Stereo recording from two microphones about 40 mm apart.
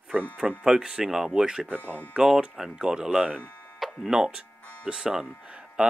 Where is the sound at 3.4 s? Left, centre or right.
Left.